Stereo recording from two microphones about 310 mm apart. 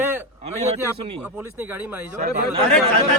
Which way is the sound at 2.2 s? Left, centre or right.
Right.